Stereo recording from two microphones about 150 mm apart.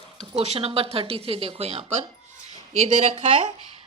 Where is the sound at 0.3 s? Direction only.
40° right (ahead or behind).